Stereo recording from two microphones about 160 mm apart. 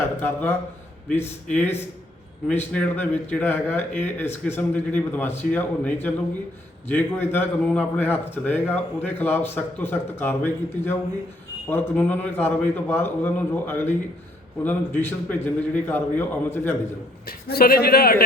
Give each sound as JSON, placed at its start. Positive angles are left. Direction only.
{"t": 0.0, "sound": "a man's voice", "side_deg": 15}
{"t": 17.2, "sound": "a man's voice", "side_deg": 70}